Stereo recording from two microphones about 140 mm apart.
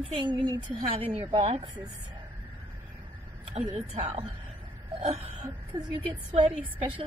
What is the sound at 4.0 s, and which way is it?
Speech, 40° right (ahead or behind).